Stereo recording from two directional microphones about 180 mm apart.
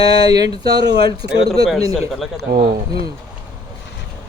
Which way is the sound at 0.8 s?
70° right (ahead or behind).